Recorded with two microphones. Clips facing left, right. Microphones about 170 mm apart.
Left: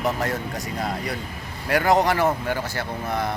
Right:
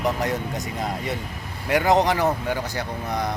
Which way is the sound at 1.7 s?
20° right (ahead or behind).